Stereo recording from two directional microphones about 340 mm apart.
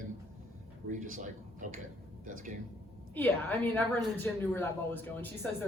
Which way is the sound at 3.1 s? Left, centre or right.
Centre.